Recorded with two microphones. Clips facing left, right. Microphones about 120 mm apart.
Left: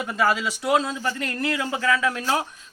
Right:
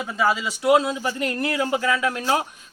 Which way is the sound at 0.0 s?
5° right (ahead or behind).